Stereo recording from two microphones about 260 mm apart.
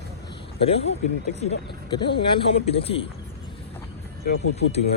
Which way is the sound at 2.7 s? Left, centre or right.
Left.